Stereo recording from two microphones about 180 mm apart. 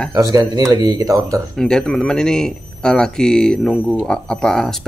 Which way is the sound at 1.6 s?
5° left (ahead or behind).